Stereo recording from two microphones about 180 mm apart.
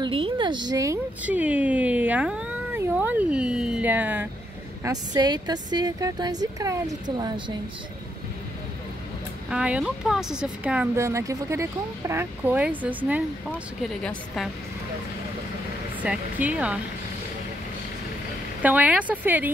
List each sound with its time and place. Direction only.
0.0 s a woman's voice: 30° right (ahead or behind)
1.2 s speech: 10° right (ahead or behind)
4.8 s a woman's voice: 20° right (ahead or behind)
9.5 s a woman's voice: 5° right (ahead or behind)
16.0 s speech: 10° right (ahead or behind)
18.6 s speech: 10° right (ahead or behind)